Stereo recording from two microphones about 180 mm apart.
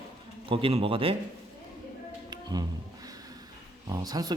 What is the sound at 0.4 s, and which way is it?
Speech, 30° right (ahead or behind).